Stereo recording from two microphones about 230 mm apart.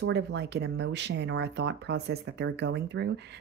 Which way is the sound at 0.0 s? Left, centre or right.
Right.